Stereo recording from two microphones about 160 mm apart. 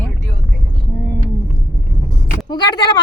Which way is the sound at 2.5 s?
25° left (ahead or behind).